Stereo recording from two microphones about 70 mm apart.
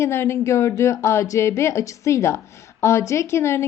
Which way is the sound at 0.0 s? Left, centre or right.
Left.